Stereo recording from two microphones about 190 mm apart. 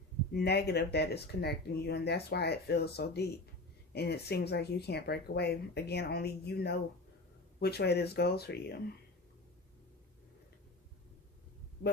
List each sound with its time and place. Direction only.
0.3 s speech: 60° left (ahead or behind)